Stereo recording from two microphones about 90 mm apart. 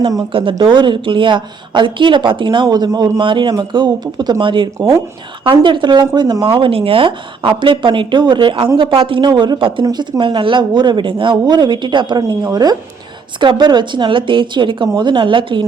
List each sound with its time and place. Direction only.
0.6 s speech: 60° right (ahead or behind)
6.4 s a woman's voice: 80° right
8.8 s a woman's voice: 85° right
9.8 s speech: 55° right (ahead or behind)
13.4 s speech: 60° right (ahead or behind)